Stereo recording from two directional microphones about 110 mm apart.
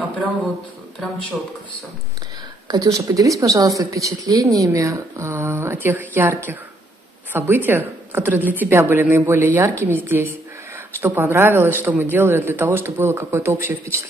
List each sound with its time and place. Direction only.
2.7 s a woman's voice: 30° right (ahead or behind)
5.3 s speech: 15° right (ahead or behind)